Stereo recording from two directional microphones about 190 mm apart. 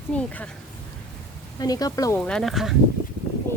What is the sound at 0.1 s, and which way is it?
Speech, 5° left (ahead or behind).